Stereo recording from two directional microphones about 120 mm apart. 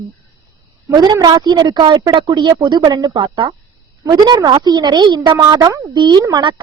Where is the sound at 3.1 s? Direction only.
45° right (ahead or behind).